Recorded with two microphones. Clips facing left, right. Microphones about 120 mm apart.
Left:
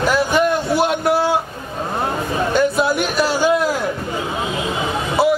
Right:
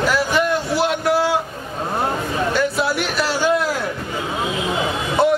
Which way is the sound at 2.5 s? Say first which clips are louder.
Left 5 dB; 20° left (ahead or behind).